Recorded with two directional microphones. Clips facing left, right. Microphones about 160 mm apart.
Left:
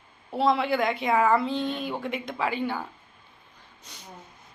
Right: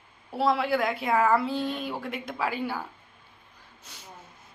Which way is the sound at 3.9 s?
5° right (ahead or behind).